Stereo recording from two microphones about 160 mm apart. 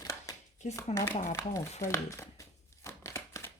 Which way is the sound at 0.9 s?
20° left (ahead or behind).